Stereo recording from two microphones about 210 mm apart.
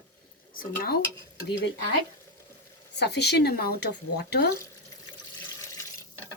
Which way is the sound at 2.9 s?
55° left (ahead or behind).